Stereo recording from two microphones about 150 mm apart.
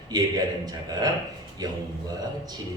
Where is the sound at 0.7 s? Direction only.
25° right (ahead or behind).